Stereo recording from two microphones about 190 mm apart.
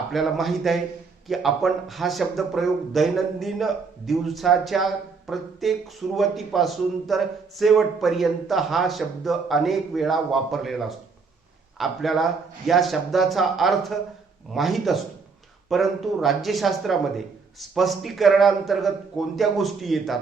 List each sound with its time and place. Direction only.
0.1 s speech: centre (ahead or behind)